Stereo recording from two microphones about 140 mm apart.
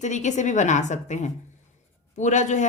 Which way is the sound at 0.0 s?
60° left (ahead or behind).